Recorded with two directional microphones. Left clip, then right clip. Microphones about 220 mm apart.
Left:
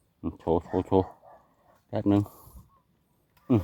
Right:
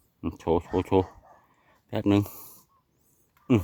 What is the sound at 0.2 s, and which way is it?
Speech, 15° right (ahead or behind).